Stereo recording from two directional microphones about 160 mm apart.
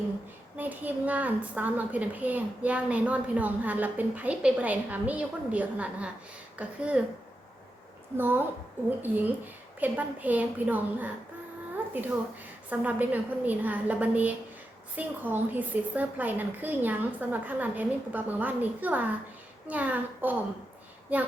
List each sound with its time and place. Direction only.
0.5 s a woman's voice: 10° right (ahead or behind)
8.1 s a woman's voice: 15° right (ahead or behind)
12.8 s a woman's voice: 10° right (ahead or behind)